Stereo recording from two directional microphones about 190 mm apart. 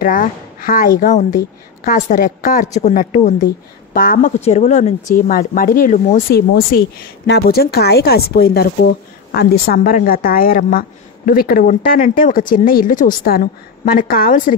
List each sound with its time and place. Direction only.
0.0 s a woman's voice: 45° left (ahead or behind)
4.4 s speech: 35° left (ahead or behind)